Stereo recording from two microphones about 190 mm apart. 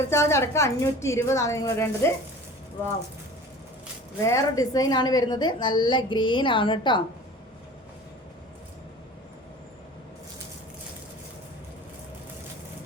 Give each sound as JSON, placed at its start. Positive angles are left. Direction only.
{"t": 0.0, "sound": "a woman's voice", "side_deg": 15}
{"t": 4.2, "sound": "a woman's voice", "side_deg": 15}